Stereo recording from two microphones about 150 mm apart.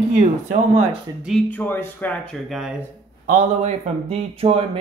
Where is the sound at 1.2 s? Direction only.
Centre (ahead or behind).